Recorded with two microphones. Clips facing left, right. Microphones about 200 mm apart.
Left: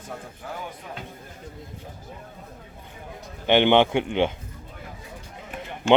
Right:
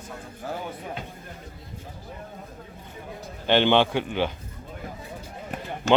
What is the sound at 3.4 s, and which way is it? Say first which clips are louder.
Speech: left 2 dB; 15° left (ahead or behind).